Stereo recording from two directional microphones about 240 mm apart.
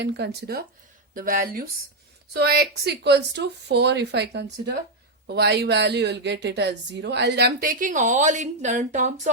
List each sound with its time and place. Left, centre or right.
0.0 s a woman's voice: right